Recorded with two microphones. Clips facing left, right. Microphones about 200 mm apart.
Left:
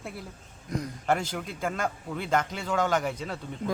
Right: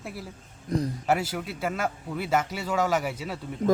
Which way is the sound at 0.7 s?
35° right (ahead or behind).